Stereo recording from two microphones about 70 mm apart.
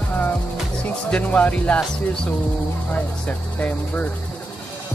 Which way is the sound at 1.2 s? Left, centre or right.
Left.